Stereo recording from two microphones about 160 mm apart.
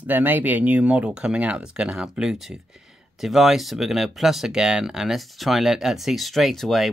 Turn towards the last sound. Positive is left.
turn(degrees=0)  # may be behind; listen again after turning